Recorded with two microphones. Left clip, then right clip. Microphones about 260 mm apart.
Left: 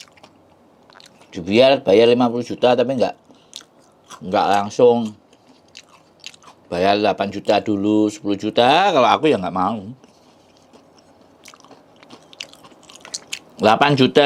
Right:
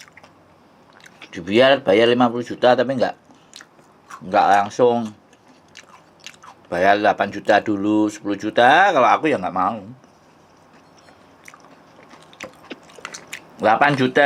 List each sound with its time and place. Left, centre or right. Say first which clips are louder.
1.4 s speech: left 1 dB; centre
4.3 s speech: right 2 dB; left
6.4 s speech: right 1 dB; left
12.5 s chewing: right 4 dB; left